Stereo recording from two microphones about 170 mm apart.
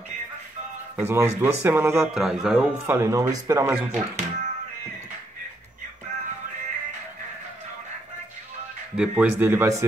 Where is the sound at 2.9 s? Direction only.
15° right (ahead or behind).